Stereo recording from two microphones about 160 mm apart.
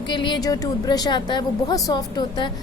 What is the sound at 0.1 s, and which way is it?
A woman's voice, 30° left (ahead or behind).